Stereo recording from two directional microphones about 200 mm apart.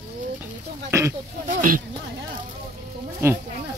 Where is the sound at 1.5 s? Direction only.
40° right (ahead or behind).